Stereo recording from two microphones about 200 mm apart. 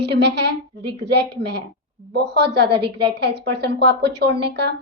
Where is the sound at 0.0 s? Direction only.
55° right (ahead or behind).